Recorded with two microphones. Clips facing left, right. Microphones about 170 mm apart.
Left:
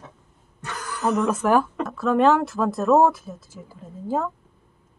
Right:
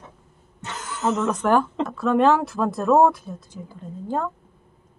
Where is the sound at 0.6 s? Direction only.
25° right (ahead or behind).